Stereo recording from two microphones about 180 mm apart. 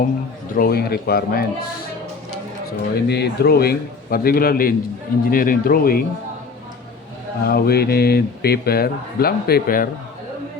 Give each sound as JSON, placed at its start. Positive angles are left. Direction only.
{"t": 0.5, "sound": "a man's voice", "side_deg": 55}
{"t": 2.6, "sound": "a man's voice", "side_deg": 60}
{"t": 7.4, "sound": "a man's voice", "side_deg": 60}